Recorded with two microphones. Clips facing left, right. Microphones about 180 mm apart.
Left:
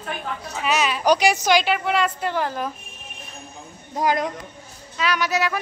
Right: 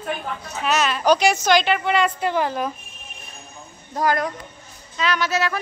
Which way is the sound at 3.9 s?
20° left (ahead or behind).